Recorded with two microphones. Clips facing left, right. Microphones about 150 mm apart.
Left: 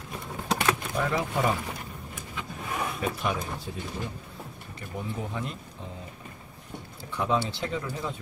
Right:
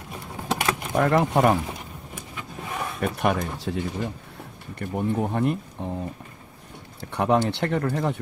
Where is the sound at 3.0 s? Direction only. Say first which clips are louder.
Right 9 dB; 65° right (ahead or behind); by 3.8 s 80° right.